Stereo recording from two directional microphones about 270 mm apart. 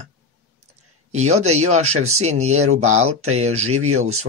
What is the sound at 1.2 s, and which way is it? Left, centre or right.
Speech, right.